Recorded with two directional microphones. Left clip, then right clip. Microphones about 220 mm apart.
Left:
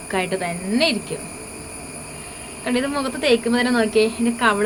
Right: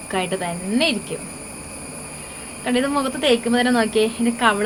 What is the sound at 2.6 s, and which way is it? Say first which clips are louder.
Speech: right 2 dB; 5° left (ahead or behind).